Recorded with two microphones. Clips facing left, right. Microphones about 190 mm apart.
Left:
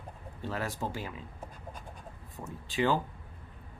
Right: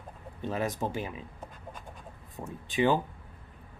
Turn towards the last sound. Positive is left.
turn(degrees=-15)  # may be behind; listen again after turning